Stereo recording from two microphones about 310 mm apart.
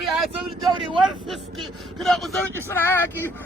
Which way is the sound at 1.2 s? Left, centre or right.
Centre.